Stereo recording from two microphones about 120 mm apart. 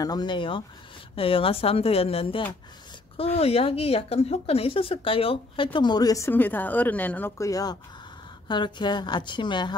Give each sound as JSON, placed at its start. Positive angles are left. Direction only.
{"t": 0.0, "sound": "a woman's voice", "side_deg": 35}
{"t": 7.3, "sound": "speech", "side_deg": 30}
{"t": 8.5, "sound": "a woman's voice", "side_deg": 40}